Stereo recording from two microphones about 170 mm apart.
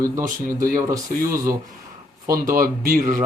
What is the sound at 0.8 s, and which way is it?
Speech, 20° right (ahead or behind).